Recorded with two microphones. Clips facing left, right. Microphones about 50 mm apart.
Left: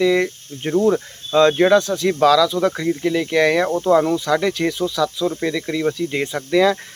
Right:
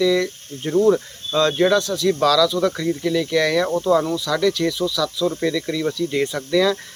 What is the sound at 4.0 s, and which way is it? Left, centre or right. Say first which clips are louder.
Speech: left 4 dB; left.